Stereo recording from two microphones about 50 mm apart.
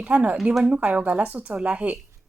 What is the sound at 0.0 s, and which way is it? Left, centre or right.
A woman's voice, right.